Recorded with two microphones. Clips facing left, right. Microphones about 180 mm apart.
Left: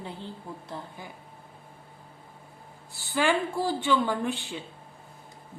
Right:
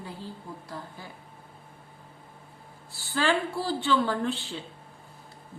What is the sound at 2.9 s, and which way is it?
A woman's voice, 15° left (ahead or behind).